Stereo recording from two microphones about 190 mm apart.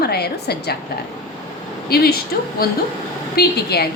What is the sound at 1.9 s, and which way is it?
A woman's voice, 55° left (ahead or behind).